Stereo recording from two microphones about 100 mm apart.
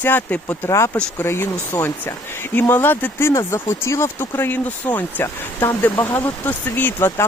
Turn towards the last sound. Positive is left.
turn(degrees=25)  # may be behind; listen again after turning